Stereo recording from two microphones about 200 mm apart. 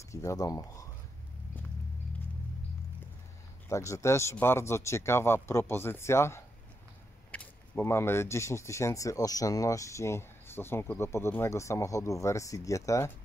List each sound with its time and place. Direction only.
0.1 s speech: 15° left (ahead or behind)
3.6 s speech: 15° left (ahead or behind)